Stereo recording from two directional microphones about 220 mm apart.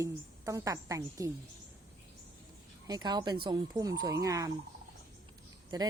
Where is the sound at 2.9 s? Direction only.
20° right (ahead or behind).